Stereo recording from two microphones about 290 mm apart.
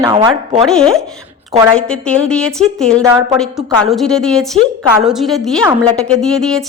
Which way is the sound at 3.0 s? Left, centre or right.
Centre.